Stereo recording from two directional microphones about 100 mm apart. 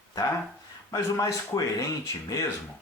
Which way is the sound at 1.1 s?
35° left (ahead or behind).